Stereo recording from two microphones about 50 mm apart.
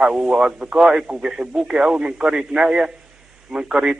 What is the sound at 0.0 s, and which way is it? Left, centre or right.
Speech, centre.